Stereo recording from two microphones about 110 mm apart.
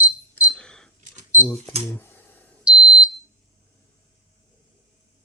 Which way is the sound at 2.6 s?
10° right (ahead or behind).